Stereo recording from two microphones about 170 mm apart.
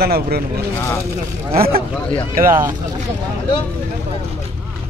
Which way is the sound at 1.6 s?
60° right (ahead or behind).